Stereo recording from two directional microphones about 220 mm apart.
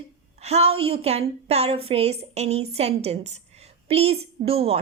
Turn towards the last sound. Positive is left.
turn(degrees=-25)  # may be behind; listen again after turning